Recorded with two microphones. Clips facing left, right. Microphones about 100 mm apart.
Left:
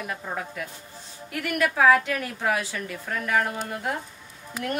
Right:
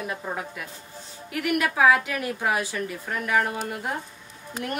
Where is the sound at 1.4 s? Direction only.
15° right (ahead or behind).